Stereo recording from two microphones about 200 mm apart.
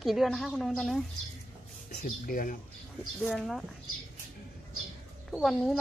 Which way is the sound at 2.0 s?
45° left (ahead or behind).